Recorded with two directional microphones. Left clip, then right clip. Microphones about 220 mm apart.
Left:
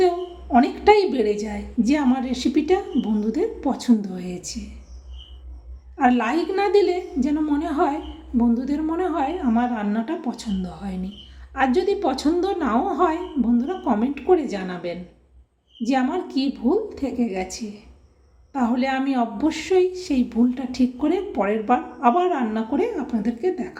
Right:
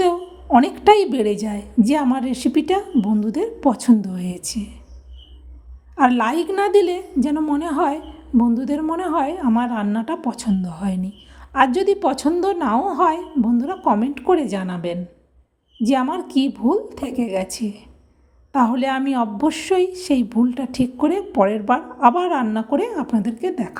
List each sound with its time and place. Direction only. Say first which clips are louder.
0.5 s a woman's voice: right 3 dB; 40° right (ahead or behind)
6.0 s a woman's voice: right 3 dB; 40° right (ahead or behind)